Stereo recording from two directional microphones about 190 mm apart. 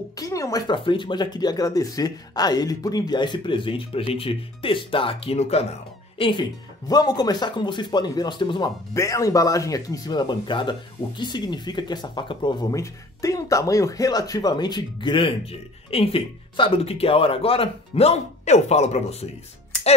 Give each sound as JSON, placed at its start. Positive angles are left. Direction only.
{"t": 0.2, "sound": "speech", "side_deg": 15}